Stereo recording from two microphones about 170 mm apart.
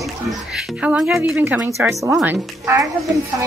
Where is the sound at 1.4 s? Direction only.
15° right (ahead or behind).